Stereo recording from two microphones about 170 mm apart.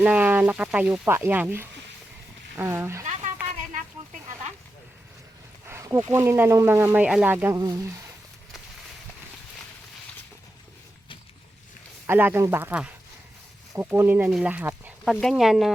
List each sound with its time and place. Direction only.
0.0 s speech: 10° right (ahead or behind)
3.0 s a sound: 45° right (ahead or behind)
5.6 s speech: 15° right (ahead or behind)
12.0 s speech: 10° right (ahead or behind)